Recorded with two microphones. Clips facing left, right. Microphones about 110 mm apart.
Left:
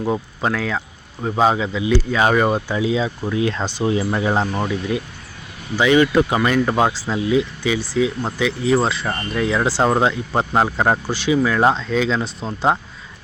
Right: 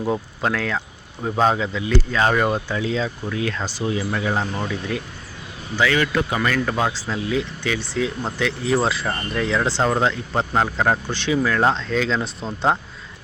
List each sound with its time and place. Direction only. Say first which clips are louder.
0.0 s speech: left 2 dB; 5° left (ahead or behind)
3.3 s speech: left 6 dB; 25° left (ahead or behind)
4.7 s speech: left 4 dB; 15° left (ahead or behind)